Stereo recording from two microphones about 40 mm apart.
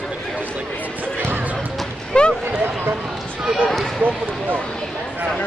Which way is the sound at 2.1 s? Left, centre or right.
Left.